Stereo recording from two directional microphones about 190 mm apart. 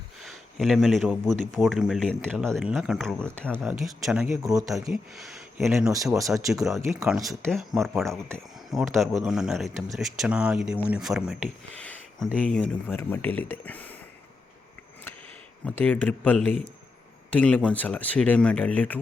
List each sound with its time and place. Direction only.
0.3 s speech: centre (ahead or behind)
6.1 s speech: 15° right (ahead or behind)
6.5 s speech: centre (ahead or behind)
6.9 s speech: 10° right (ahead or behind)
7.2 s speech: centre (ahead or behind)
15.6 s speech: 10° left (ahead or behind)